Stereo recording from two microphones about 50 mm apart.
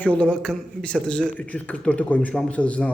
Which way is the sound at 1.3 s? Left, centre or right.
Left.